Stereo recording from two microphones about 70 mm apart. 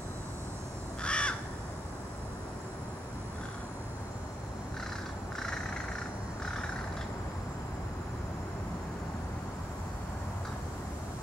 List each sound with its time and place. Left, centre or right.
1.0 s crow: centre